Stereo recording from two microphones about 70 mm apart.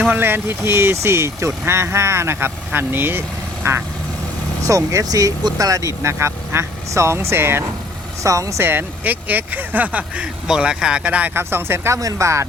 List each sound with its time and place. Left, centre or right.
0.1 s speech: right
4.6 s speech: right
5.0 s speech: right
8.2 s speech: right
8.6 s speech: right
10.4 s speech: centre
11.3 s speech: right
11.9 s speech: right